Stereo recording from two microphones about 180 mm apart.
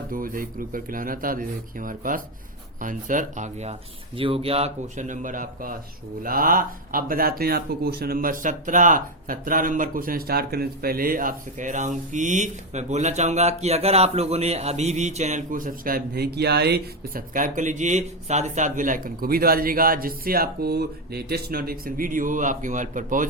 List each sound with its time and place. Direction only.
0.1 s speech: 50° right (ahead or behind)